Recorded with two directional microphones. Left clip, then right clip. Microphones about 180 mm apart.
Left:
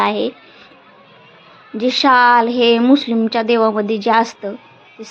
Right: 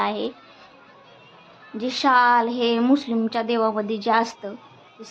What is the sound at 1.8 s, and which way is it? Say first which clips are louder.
A woman's voice: left 7 dB; 20° left (ahead or behind).